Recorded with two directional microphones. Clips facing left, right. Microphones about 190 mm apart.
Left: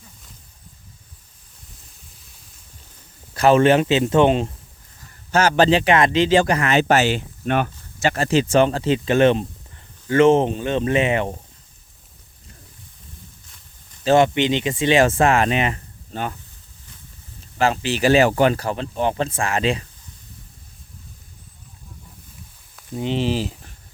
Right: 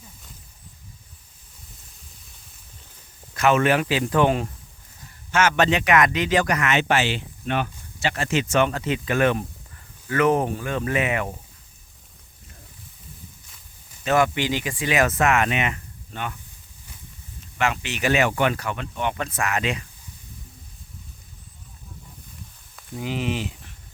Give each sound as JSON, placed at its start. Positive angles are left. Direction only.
{"t": 3.3, "sound": "speech", "side_deg": 30}
{"t": 5.3, "sound": "a man's voice", "side_deg": 35}
{"t": 14.0, "sound": "speech", "side_deg": 25}
{"t": 17.6, "sound": "a man's voice", "side_deg": 35}
{"t": 23.0, "sound": "speech", "side_deg": 25}